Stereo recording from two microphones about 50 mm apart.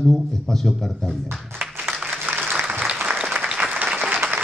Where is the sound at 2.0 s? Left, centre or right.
Right.